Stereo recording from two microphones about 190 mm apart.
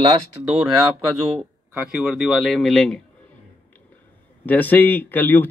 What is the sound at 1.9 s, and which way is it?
Speech, centre (ahead or behind).